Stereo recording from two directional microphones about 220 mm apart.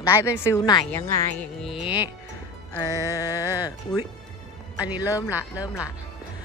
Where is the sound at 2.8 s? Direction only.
15° right (ahead or behind).